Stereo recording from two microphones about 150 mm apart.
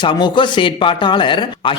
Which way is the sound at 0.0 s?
30° left (ahead or behind).